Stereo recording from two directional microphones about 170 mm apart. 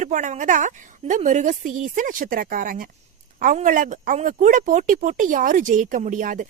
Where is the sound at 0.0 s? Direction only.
45° right (ahead or behind).